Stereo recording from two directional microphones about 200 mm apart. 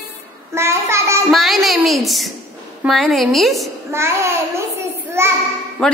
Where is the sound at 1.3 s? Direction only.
Centre (ahead or behind).